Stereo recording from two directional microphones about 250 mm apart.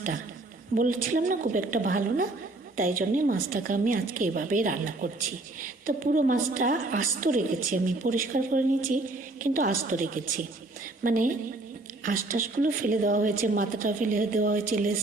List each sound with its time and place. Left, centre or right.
0.8 s a woman's voice: right